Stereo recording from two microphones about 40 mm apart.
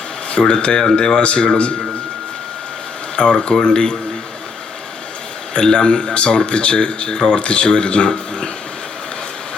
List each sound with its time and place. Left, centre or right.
0.3 s speech: centre
3.2 s speech: left
5.5 s speech: left